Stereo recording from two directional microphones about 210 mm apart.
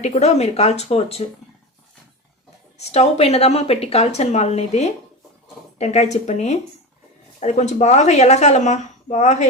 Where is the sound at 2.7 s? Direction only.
30° left (ahead or behind).